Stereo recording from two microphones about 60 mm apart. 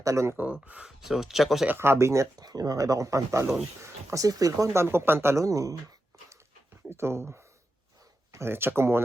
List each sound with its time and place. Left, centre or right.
0.0 s speech: right
0.3 s speech: right
0.9 s speech: centre
1.8 s speech: right
2.5 s speech: right
4.7 s speech: right
5.4 s speech: right
6.9 s speech: right
8.4 s speech: right